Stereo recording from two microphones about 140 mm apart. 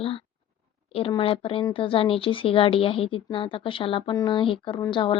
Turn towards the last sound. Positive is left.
turn(degrees=35)  # may be behind; listen again after turning